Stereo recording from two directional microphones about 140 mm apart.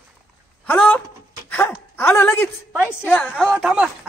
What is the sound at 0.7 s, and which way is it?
Speech, 15° left (ahead or behind).